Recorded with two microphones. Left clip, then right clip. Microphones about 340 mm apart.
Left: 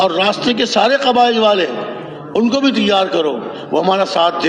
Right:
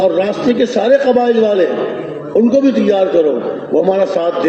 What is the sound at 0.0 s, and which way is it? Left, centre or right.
A man's voice, left.